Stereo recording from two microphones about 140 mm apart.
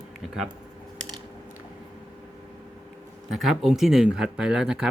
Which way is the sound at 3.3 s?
Centre (ahead or behind).